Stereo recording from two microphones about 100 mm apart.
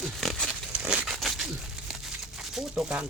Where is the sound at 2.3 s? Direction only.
5° right (ahead or behind).